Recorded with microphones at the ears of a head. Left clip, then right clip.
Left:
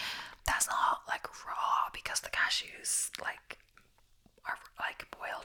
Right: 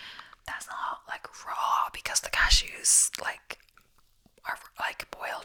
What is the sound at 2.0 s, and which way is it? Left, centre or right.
Speech, right.